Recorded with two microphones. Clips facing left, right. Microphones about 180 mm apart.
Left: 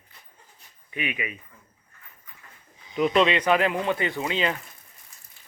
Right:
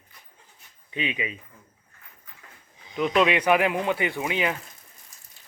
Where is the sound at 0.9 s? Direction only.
25° right (ahead or behind).